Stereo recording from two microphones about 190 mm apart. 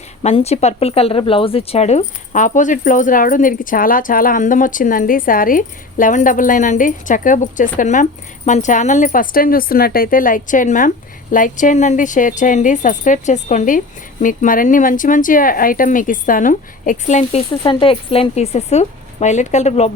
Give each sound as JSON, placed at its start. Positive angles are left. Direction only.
{"t": 0.2, "sound": "a woman's voice", "side_deg": 35}
{"t": 17.5, "sound": "speech", "side_deg": 25}